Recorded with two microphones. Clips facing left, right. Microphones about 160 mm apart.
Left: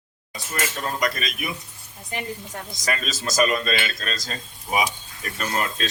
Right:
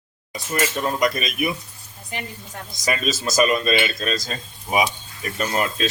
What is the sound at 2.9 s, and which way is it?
Speech, 10° right (ahead or behind).